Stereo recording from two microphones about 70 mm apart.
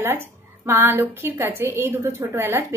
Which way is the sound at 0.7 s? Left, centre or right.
Right.